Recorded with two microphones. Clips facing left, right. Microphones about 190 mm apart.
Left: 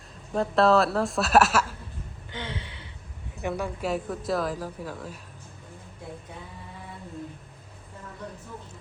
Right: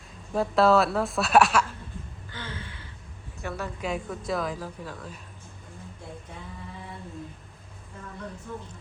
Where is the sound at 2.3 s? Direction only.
20° left (ahead or behind).